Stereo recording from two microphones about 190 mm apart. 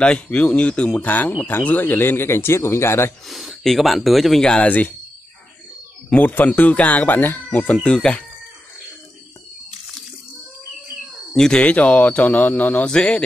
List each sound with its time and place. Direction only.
0.0 s speech: 5° left (ahead or behind)
3.3 s speech: centre (ahead or behind)
6.0 s speech: 10° left (ahead or behind)
11.3 s speech: 5° left (ahead or behind)